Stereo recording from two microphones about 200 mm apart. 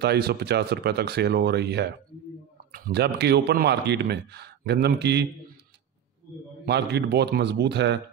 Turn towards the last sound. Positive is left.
turn(degrees=-60)  # may be behind; listen again after turning